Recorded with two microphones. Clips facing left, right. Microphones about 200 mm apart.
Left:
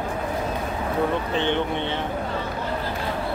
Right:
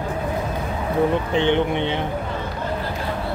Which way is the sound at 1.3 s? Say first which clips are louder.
Right 6 dB; 15° right (ahead or behind).